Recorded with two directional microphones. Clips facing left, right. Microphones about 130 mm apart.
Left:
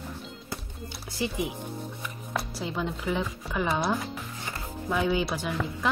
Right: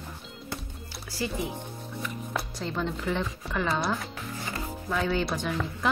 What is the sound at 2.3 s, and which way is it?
Speech, 5° left (ahead or behind).